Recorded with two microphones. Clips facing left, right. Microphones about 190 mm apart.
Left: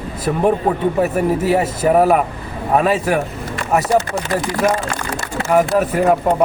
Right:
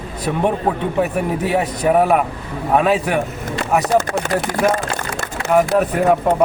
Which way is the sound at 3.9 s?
50° right (ahead or behind).